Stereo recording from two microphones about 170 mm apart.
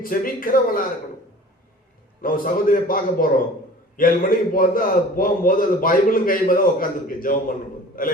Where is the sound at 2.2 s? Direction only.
55° left (ahead or behind).